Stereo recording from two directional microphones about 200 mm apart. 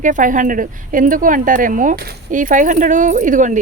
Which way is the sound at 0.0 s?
40° right (ahead or behind).